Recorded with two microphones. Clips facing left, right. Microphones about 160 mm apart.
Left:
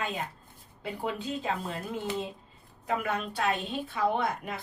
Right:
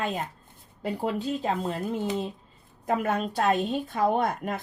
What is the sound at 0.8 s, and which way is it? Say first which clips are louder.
Speech: right 5 dB; 40° right (ahead or behind).